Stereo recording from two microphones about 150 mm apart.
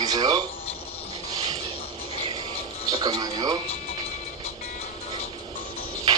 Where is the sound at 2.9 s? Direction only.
30° right (ahead or behind).